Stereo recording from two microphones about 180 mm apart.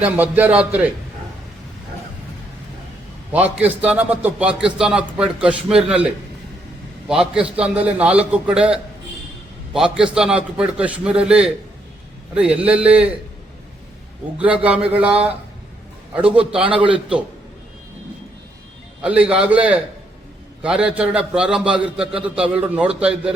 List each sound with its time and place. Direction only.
0.0 s a man's voice: 10° right (ahead or behind)
3.8 s a man's voice: 10° right (ahead or behind)
14.3 s a man's voice: 5° right (ahead or behind)
16.6 s a man's voice: 30° right (ahead or behind)
16.9 s a man's voice: 5° right (ahead or behind)
19.0 s a man's voice: 5° right (ahead or behind)